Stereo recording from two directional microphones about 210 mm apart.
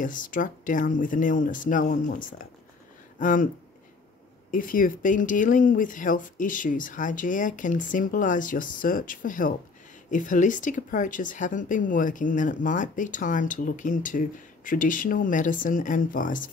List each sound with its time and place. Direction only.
0.0 s speech: 40° left (ahead or behind)
4.5 s speech: 40° left (ahead or behind)